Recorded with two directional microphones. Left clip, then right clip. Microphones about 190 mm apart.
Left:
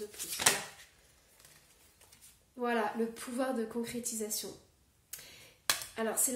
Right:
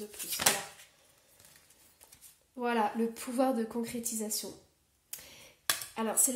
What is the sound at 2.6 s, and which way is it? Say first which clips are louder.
A woman's voice: right 2 dB; 40° right (ahead or behind).